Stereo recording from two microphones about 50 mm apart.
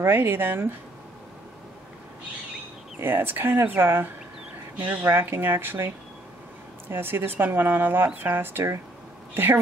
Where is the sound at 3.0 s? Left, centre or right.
Right.